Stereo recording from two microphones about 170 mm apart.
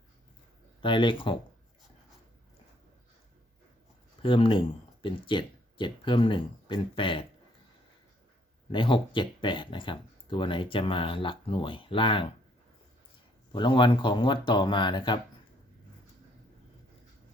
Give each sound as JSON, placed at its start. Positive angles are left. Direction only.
{"t": 0.8, "sound": "speech", "side_deg": 30}
{"t": 4.2, "sound": "speech", "side_deg": 30}
{"t": 8.7, "sound": "speech", "side_deg": 30}
{"t": 13.5, "sound": "speech", "side_deg": 25}